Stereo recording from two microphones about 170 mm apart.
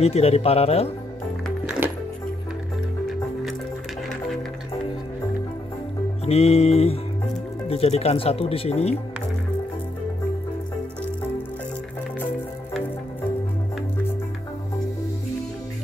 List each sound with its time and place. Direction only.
0.0 s speech: 40° left (ahead or behind)
6.2 s speech: 35° left (ahead or behind)